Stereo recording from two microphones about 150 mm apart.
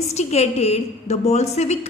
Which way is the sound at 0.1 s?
45° left (ahead or behind).